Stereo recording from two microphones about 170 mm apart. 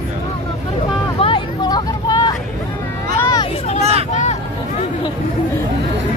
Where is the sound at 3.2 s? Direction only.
20° left (ahead or behind).